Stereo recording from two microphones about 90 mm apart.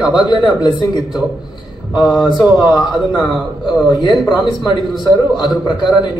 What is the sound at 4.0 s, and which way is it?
A man's voice, 55° left (ahead or behind).